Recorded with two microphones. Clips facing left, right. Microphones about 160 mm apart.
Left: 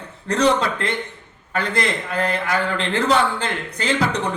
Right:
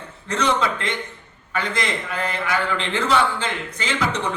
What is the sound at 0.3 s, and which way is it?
A man's voice, 35° left (ahead or behind).